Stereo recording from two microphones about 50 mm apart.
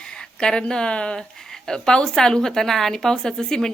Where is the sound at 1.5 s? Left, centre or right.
Centre.